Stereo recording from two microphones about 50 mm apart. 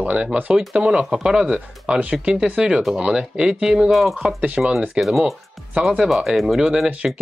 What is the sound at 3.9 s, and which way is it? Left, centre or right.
Speech, centre.